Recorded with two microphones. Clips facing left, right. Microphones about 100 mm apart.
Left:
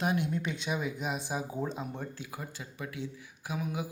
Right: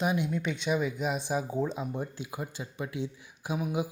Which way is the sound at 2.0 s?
20° right (ahead or behind).